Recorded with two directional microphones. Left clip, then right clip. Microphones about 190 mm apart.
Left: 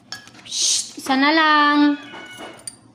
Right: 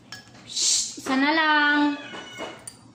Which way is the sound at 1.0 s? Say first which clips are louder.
Left 6 dB; 60° left (ahead or behind).